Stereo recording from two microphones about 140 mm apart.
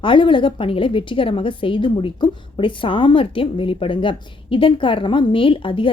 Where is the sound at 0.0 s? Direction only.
35° left (ahead or behind).